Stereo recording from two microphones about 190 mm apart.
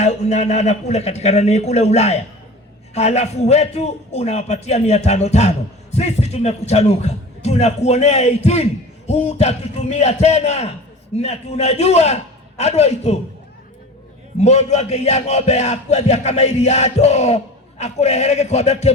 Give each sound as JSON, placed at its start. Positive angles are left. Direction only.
{"t": 0.0, "sound": "a man's voice", "side_deg": 35}
{"t": 14.3, "sound": "a man's voice", "side_deg": 35}